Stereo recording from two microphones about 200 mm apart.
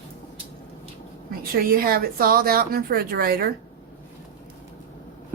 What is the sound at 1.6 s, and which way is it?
Speech, 45° right (ahead or behind).